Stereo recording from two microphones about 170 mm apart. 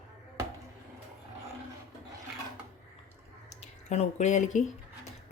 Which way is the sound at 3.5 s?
45° left (ahead or behind).